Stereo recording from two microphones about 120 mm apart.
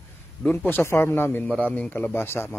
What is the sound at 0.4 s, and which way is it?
A man's voice, 10° left (ahead or behind).